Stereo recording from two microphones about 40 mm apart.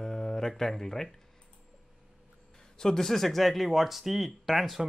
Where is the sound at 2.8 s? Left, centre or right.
Centre.